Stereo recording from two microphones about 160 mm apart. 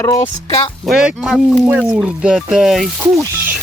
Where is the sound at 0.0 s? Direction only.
20° left (ahead or behind).